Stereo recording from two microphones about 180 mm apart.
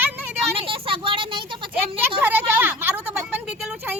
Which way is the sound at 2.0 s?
10° right (ahead or behind).